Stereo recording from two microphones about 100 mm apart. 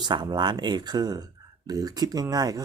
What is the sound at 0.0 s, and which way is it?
Speech, 50° right (ahead or behind).